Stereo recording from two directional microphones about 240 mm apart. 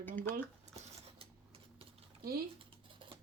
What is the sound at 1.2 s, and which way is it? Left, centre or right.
Typewriter, right.